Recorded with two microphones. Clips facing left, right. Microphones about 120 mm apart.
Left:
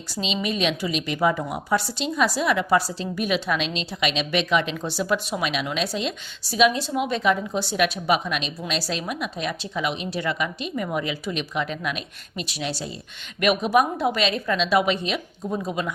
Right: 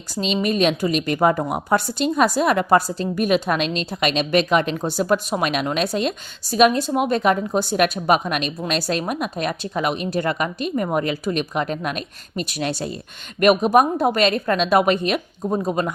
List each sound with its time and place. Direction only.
0.2 s a woman's voice: 45° right (ahead or behind)